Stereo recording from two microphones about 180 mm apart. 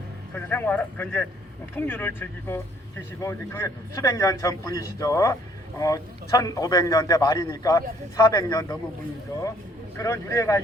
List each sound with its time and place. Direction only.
0.3 s a man's voice: 10° left (ahead or behind)
10.0 s a man's voice: 15° left (ahead or behind)